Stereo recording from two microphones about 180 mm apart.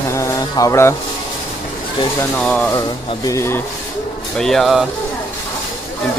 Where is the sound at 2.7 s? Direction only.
25° left (ahead or behind).